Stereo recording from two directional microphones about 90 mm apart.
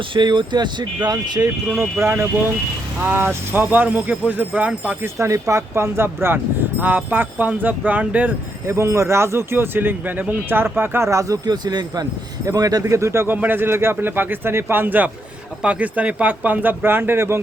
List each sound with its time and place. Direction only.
0.1 s speech: 60° right (ahead or behind)
1.8 s speech: 25° right (ahead or behind)
5.0 s speech: 35° right (ahead or behind); by 8.3 s 15° right (ahead or behind)
8.6 s speech: 30° right (ahead or behind)